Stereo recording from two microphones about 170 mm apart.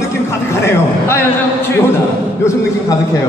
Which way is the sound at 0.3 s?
15° left (ahead or behind).